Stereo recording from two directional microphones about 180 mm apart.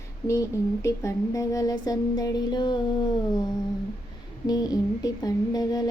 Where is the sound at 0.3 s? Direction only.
15° left (ahead or behind).